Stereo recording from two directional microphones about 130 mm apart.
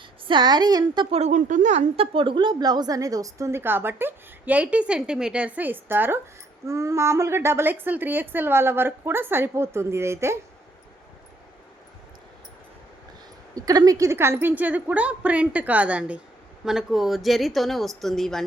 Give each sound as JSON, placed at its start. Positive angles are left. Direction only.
{"t": 0.3, "sound": "a woman's voice", "side_deg": -35}
{"t": 1.1, "sound": "speech", "side_deg": -65}
{"t": 2.0, "sound": "a woman's voice", "side_deg": -40}
{"t": 13.5, "sound": "a woman's voice", "side_deg": -30}